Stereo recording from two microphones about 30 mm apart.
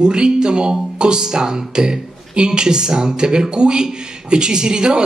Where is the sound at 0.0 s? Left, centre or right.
Right.